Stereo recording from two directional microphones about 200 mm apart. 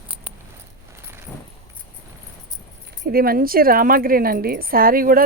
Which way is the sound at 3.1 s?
50° right (ahead or behind).